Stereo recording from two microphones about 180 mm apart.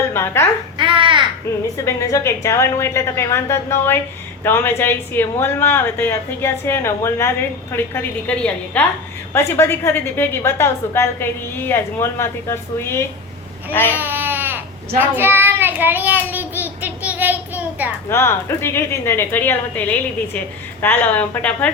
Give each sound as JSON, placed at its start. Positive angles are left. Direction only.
{"t": 0.1, "sound": "a woman's voice", "side_deg": 15}
{"t": 0.8, "sound": "babbling", "side_deg": -30}
{"t": 1.8, "sound": "a woman's voice", "side_deg": 15}
{"t": 13.9, "sound": "baby cry", "side_deg": -10}
{"t": 14.9, "sound": "child singing", "side_deg": -10}
{"t": 18.1, "sound": "a woman's voice", "side_deg": 15}